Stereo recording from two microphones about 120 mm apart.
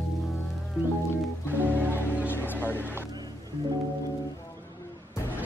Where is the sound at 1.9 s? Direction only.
15° left (ahead or behind).